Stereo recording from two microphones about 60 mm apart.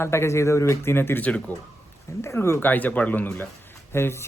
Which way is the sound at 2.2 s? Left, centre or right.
Left.